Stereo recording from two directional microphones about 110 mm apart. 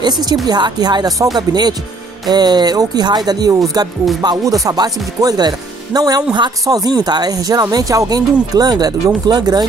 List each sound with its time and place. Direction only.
0.0 s speech: 40° right (ahead or behind)